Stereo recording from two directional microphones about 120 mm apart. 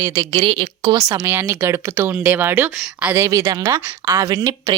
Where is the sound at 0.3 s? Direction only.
45° right (ahead or behind).